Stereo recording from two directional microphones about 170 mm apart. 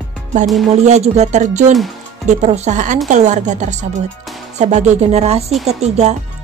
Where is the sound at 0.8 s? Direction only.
40° right (ahead or behind).